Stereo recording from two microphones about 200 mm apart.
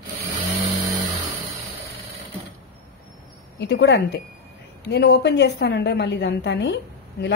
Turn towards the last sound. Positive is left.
turn(degrees=60)  # may be behind; listen again after turning